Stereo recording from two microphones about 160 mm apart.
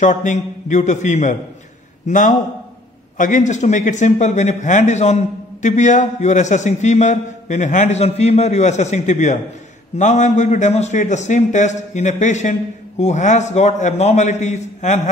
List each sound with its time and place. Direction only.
0.0 s a man's voice: 50° left (ahead or behind)